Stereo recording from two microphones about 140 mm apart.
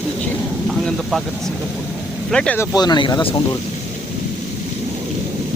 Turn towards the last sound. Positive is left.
turn(degrees=30)  # may be behind; listen again after turning